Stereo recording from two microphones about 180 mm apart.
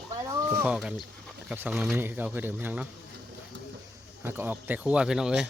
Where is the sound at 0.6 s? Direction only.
5° right (ahead or behind).